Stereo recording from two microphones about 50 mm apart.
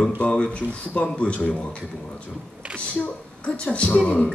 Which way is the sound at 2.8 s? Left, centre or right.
Left.